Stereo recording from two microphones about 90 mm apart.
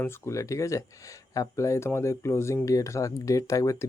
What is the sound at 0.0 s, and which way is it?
Speech, 30° left (ahead or behind).